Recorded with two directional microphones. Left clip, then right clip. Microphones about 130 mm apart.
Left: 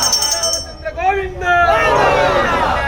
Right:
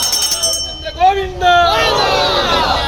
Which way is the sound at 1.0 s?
5° right (ahead or behind).